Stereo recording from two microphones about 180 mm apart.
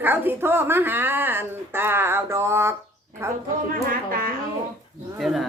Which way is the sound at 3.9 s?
50° right (ahead or behind).